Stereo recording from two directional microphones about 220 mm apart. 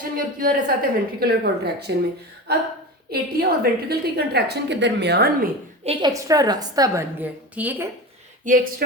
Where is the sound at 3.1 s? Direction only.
45° right (ahead or behind).